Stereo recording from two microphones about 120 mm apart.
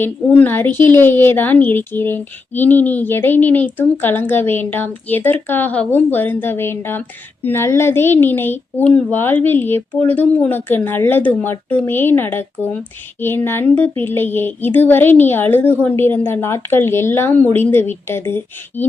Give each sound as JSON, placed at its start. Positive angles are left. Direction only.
{"t": 0.0, "sound": "a woman's voice", "side_deg": 15}